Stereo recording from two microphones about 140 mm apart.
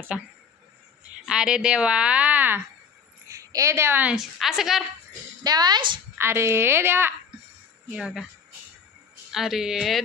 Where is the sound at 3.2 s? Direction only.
25° right (ahead or behind); by 4.8 s centre (ahead or behind).